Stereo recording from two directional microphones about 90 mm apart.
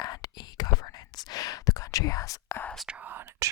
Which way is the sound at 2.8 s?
15° right (ahead or behind).